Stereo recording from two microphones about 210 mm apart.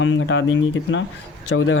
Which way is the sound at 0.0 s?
65° left (ahead or behind).